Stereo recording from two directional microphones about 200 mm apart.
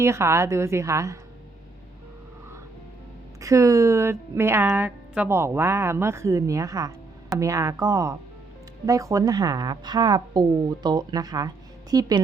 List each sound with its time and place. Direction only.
0.0 s a woman's voice: 15° right (ahead or behind)
3.4 s a woman's voice: 15° right (ahead or behind)